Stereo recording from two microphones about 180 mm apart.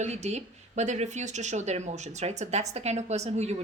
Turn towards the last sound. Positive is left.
turn(degrees=-35)  # may be behind; listen again after turning